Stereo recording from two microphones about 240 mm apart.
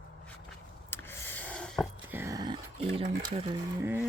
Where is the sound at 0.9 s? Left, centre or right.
Centre; by 3.5 s right.